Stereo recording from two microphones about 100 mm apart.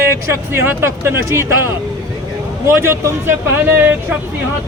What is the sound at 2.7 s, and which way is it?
Speech, 20° right (ahead or behind).